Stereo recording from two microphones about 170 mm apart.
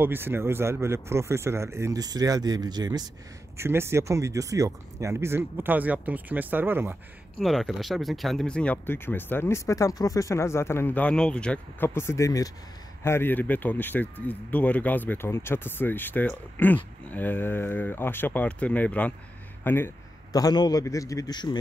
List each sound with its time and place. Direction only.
0.0 s speech: 10° right (ahead or behind)
7.3 s speech: centre (ahead or behind)
20.3 s a man's voice: 25° left (ahead or behind)